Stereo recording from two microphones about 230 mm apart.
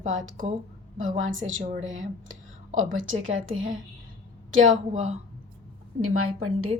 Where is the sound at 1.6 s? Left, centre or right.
Right.